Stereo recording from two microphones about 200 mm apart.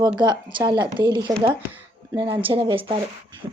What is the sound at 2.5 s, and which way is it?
Speech, 25° right (ahead or behind).